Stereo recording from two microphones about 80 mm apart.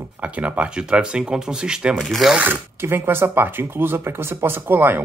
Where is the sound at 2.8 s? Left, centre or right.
Right.